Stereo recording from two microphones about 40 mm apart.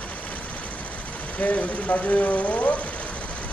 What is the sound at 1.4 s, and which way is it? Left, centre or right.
Speech, left.